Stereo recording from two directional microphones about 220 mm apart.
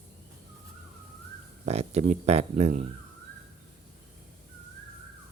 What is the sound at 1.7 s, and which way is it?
Speech, 30° right (ahead or behind).